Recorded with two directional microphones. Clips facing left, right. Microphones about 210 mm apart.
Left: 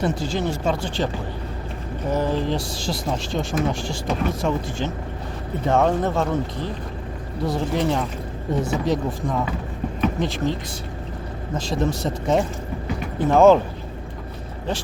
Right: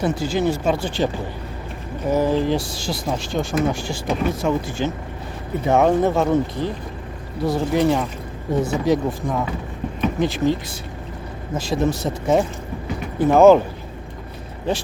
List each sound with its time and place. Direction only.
0.0 s speech: centre (ahead or behind)
11.7 s speech: 5° right (ahead or behind)